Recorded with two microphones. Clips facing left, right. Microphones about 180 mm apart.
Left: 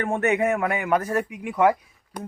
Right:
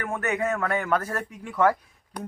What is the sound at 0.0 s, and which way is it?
Speech, 25° left (ahead or behind).